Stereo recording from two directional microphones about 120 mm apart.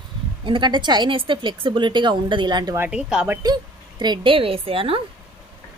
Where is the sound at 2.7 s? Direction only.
15° right (ahead or behind).